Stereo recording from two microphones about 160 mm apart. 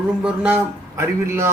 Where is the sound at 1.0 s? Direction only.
15° right (ahead or behind).